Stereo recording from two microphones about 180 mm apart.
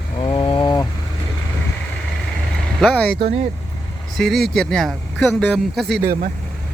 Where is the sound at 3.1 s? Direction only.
35° right (ahead or behind).